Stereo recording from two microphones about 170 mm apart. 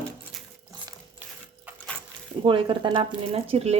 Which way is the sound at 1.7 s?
5° left (ahead or behind).